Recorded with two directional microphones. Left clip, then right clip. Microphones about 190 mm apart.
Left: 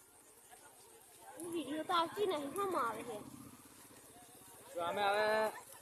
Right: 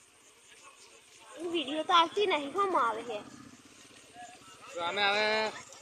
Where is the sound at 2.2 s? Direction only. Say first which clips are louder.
Right 8 dB; 25° right (ahead or behind).